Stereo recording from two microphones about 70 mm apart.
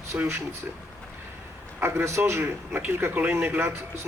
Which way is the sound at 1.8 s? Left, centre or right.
Right.